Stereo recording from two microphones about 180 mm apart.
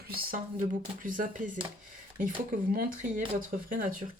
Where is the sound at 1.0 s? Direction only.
45° right (ahead or behind).